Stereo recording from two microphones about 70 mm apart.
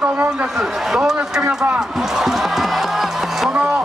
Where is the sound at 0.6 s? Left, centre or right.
Centre.